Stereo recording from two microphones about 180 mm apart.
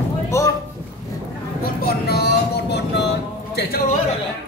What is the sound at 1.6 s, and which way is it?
Music, 60° left (ahead or behind).